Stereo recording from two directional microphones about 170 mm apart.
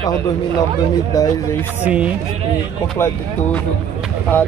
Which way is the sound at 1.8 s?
5° right (ahead or behind).